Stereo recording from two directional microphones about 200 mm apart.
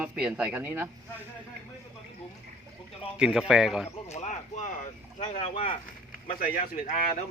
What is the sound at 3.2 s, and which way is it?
Speech, 5° right (ahead or behind).